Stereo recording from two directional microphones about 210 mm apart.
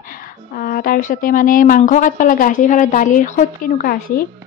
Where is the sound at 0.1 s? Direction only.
40° left (ahead or behind).